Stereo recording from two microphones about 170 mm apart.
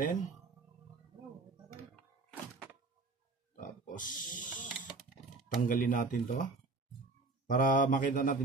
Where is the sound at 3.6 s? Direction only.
50° left (ahead or behind).